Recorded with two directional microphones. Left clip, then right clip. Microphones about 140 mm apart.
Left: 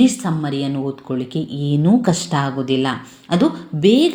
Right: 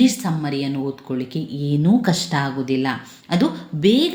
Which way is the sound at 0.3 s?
20° left (ahead or behind).